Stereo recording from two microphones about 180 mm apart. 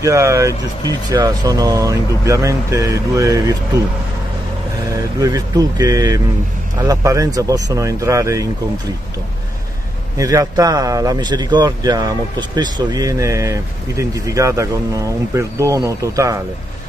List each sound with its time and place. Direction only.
0.0 s a man's voice: 15° right (ahead or behind)
4.9 s a man's voice: 20° right (ahead or behind)
10.1 s a man's voice: 20° right (ahead or behind)